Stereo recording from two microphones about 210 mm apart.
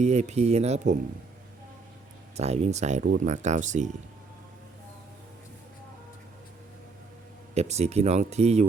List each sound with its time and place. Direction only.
0.0 s speech: 30° right (ahead or behind)
2.3 s speech: 30° right (ahead or behind)
7.5 s speech: 30° right (ahead or behind)